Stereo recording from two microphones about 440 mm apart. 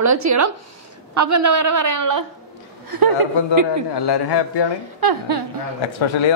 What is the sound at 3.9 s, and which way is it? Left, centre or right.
Speech, left.